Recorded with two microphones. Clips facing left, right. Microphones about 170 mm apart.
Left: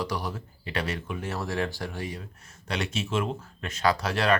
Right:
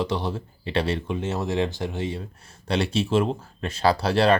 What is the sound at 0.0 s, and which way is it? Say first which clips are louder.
Speech: right 5 dB; 25° right (ahead or behind).